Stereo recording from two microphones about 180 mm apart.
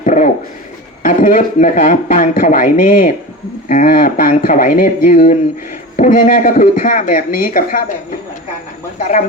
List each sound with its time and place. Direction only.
0.0 s speech: 45° left (ahead or behind)